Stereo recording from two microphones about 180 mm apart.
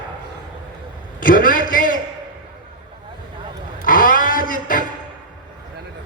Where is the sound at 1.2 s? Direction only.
50° left (ahead or behind).